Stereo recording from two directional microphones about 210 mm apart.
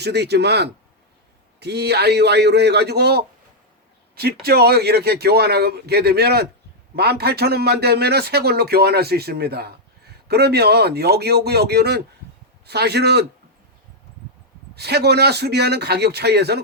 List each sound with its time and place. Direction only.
0.0 s a man's voice: 50° right (ahead or behind)
14.8 s a man's voice: 50° right (ahead or behind)